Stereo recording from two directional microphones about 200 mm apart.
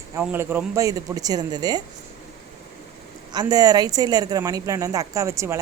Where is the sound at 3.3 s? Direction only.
20° right (ahead or behind).